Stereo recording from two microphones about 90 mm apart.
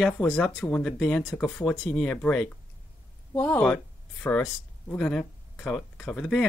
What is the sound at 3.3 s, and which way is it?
Speech, 25° left (ahead or behind).